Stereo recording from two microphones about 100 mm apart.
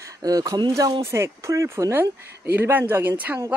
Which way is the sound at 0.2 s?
40° right (ahead or behind).